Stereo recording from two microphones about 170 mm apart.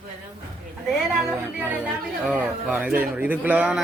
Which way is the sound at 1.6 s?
5° right (ahead or behind).